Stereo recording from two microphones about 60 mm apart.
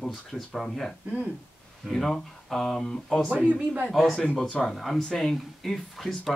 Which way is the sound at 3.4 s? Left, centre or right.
Centre.